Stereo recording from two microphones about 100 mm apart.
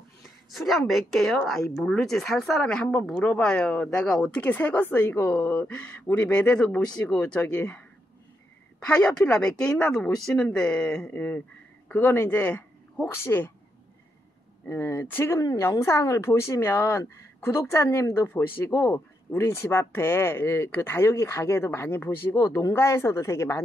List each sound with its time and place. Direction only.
0.5 s a woman's voice: centre (ahead or behind); by 13.5 s 20° left (ahead or behind)
14.7 s a woman's voice: 25° left (ahead or behind)
22.3 s a woman's voice: 35° left (ahead or behind)